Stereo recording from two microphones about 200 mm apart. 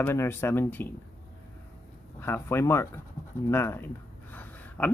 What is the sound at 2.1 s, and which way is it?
Speech, 10° left (ahead or behind).